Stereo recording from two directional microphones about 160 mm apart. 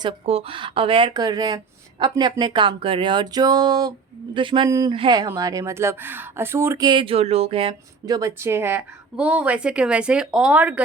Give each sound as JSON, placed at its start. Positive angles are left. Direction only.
{"t": 0.0, "sound": "speech", "side_deg": -35}
{"t": 6.8, "sound": "speech", "side_deg": -30}